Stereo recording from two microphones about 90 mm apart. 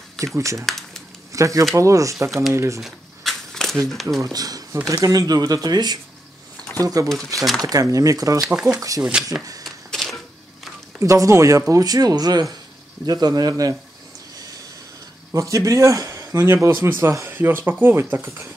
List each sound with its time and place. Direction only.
0.6 s a sound: 5° left (ahead or behind)
1.3 s speech: 35° right (ahead or behind)
2.8 s a sound: 5° left (ahead or behind)
3.9 s speech: centre (ahead or behind)
4.2 s speech: 45° right (ahead or behind)
8.5 s speech: 10° right (ahead or behind)
8.7 s speech: 40° right (ahead or behind)
9.0 s speech: 10° right (ahead or behind)
9.7 s a sound: 5° left (ahead or behind)
11.0 s speech: 35° right (ahead or behind)
11.7 s speech: 45° right (ahead or behind)
15.3 s speech: 40° right (ahead or behind)